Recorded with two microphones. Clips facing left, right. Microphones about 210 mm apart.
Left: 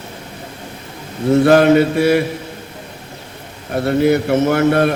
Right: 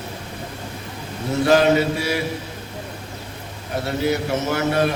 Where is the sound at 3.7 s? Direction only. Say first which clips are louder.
Left 8 dB; 55° left (ahead or behind).